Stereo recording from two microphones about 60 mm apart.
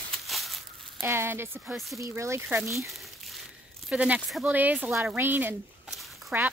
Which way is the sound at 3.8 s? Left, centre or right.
Centre.